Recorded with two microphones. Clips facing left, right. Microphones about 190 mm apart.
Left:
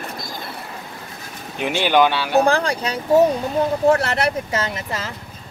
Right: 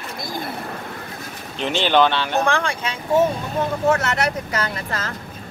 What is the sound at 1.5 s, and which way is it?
Speech, 10° left (ahead or behind).